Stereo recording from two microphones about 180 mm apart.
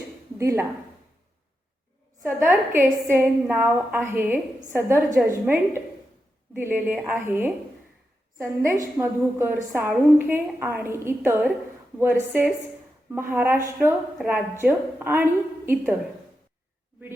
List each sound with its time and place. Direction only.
0.3 s a woman's voice: 15° right (ahead or behind)
2.2 s a woman's voice: 15° right (ahead or behind)
14.6 s a woman's voice: 10° right (ahead or behind)